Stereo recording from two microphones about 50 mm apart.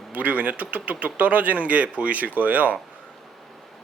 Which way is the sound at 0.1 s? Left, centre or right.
Right.